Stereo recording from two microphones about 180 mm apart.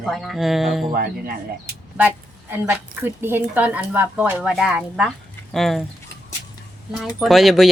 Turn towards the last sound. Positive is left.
turn(degrees=0)  # may be behind; listen again after turning